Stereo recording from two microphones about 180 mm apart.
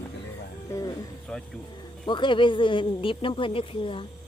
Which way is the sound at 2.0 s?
25° left (ahead or behind).